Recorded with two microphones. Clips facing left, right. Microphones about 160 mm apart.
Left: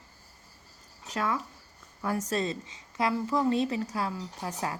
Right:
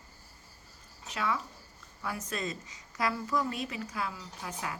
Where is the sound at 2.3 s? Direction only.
30° left (ahead or behind).